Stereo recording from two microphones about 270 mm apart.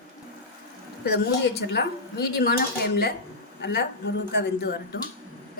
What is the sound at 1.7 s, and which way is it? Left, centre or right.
A woman's voice, left.